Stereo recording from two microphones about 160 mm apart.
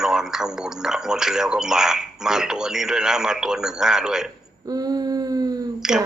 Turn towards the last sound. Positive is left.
turn(degrees=-5)  # may be behind; listen again after turning